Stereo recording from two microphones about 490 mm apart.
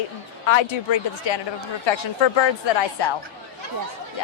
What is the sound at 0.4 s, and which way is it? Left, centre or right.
A woman's voice, left.